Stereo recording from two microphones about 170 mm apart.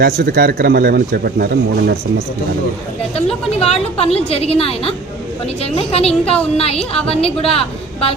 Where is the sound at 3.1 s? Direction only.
35° left (ahead or behind).